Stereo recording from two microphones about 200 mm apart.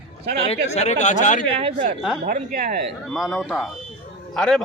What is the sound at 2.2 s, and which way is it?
Speech, 40° right (ahead or behind).